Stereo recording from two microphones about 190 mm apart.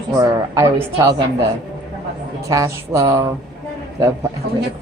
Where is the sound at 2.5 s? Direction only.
15° right (ahead or behind).